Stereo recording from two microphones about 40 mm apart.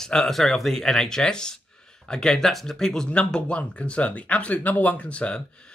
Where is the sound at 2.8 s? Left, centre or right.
Centre.